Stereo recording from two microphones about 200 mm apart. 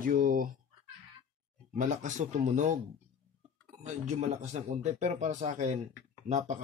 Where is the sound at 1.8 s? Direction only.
40° right (ahead or behind).